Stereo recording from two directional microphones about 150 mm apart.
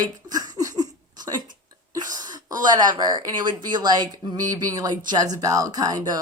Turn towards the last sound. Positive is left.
turn(degrees=-25)  # may be behind; listen again after turning